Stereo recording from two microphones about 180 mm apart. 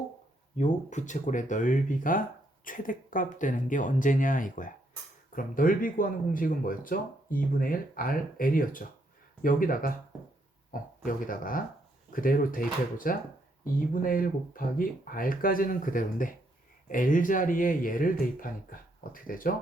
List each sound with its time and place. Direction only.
0.5 s speech: 40° left (ahead or behind)